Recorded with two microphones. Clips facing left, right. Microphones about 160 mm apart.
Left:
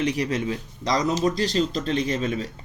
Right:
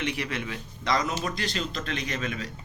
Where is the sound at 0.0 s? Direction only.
40° left (ahead or behind).